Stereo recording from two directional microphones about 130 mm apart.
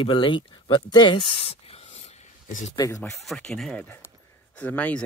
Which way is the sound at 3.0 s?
5° left (ahead or behind).